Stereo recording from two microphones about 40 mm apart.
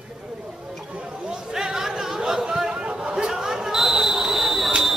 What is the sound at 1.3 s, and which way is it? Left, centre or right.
Chatter, centre.